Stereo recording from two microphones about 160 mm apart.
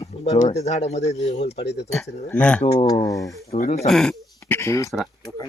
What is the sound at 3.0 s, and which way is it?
Speech, 20° left (ahead or behind).